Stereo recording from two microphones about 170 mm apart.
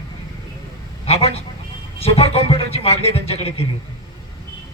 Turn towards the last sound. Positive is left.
turn(degrees=35)  # may be behind; listen again after turning